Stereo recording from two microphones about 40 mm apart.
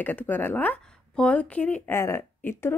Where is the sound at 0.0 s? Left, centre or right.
Left.